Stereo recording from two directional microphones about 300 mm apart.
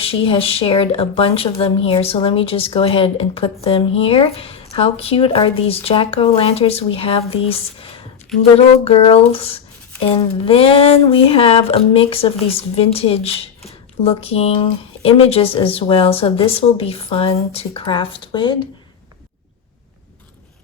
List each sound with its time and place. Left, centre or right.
0.0 s speech: centre